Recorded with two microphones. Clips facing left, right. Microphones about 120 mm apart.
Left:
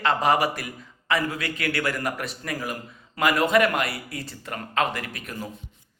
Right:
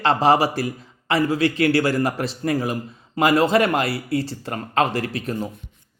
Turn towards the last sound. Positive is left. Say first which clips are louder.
# right 9 dB
turn(degrees=-30)  # may be behind; listen again after turning